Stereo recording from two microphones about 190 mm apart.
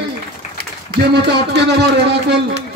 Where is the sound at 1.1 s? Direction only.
60° right (ahead or behind).